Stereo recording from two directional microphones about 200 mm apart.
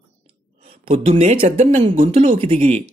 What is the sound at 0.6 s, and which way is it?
Speech, 30° right (ahead or behind).